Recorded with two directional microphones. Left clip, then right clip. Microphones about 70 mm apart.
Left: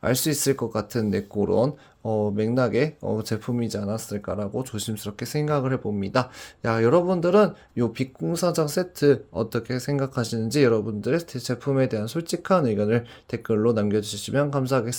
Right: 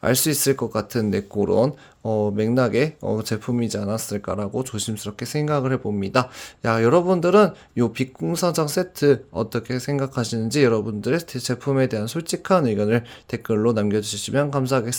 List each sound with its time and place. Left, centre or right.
0.0 s speech: right
3.8 s speech: right
4.7 s speech: right
5.0 s speech: centre
10.7 s speech: right